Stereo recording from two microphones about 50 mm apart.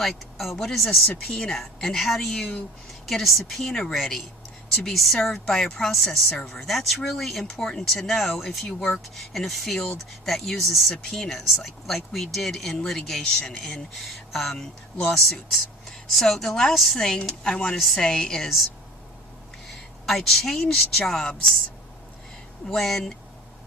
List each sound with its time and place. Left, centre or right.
0.0 s speech: centre
1.3 s a woman's voice: left
1.5 s speech: centre
17.7 s speech: centre
18.0 s speech: centre
19.6 s speech: centre
22.7 s speech: centre